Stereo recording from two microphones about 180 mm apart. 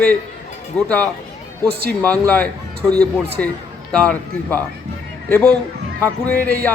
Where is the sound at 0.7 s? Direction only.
5° left (ahead or behind).